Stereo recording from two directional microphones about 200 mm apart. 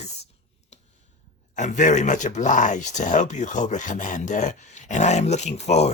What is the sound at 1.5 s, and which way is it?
Speech, 35° left (ahead or behind).